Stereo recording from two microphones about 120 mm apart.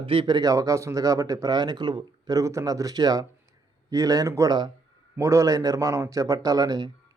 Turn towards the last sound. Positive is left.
turn(degrees=-35)  # may be behind; listen again after turning